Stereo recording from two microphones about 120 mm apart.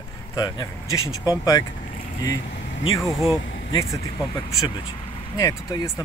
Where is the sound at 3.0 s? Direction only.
Centre (ahead or behind).